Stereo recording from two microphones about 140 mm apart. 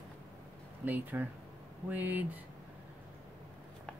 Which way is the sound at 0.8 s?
10° right (ahead or behind).